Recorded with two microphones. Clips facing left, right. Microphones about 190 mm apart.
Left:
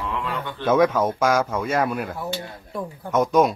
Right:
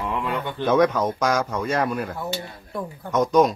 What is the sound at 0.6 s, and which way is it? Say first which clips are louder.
Speech: left 1 dB; 5° left (ahead or behind).